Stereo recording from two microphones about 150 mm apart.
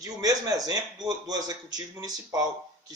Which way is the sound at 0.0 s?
25° right (ahead or behind).